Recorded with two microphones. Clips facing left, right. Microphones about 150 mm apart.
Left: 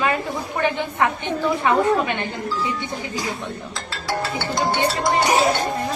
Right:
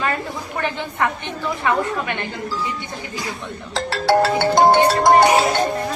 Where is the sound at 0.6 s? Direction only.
15° left (ahead or behind).